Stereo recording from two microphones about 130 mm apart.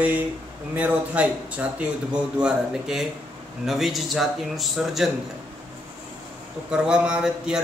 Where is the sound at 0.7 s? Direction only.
10° right (ahead or behind).